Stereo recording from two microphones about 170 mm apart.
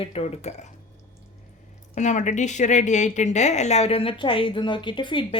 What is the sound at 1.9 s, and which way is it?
A woman's voice, 45° left (ahead or behind).